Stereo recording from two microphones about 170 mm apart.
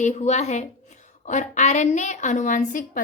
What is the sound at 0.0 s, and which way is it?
A woman's voice, 45° left (ahead or behind).